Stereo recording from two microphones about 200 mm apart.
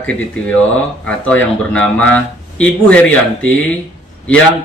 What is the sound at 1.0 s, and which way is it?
Speech, 5° left (ahead or behind).